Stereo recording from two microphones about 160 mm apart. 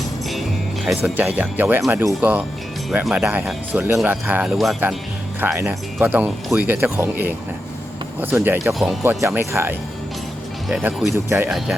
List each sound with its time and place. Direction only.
0.9 s speech: 5° right (ahead or behind)
4.5 s speech: centre (ahead or behind)
5.4 s speech: 10° right (ahead or behind)
10.7 s speech: centre (ahead or behind)
11.1 s speech: 15° right (ahead or behind)
11.4 s speech: centre (ahead or behind)